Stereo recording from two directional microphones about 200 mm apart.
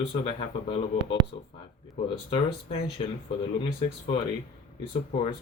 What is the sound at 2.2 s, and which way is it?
Speech, 30° left (ahead or behind).